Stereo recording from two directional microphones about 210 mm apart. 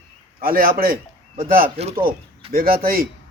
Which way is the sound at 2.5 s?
45° right (ahead or behind).